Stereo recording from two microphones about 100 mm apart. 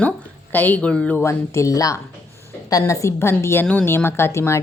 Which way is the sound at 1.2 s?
30° left (ahead or behind).